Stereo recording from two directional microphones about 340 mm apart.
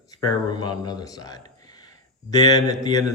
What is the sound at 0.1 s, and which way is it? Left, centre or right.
Speech, centre.